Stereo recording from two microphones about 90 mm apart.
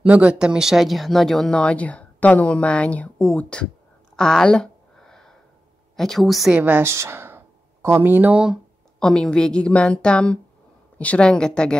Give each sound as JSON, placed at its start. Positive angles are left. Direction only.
{"t": 0.0, "sound": "speech", "side_deg": -15}
{"t": 4.2, "sound": "a sound", "side_deg": 5}
{"t": 5.9, "sound": "a woman's voice", "side_deg": 5}
{"t": 6.5, "sound": "speech", "side_deg": -20}
{"t": 9.0, "sound": "speech", "side_deg": 10}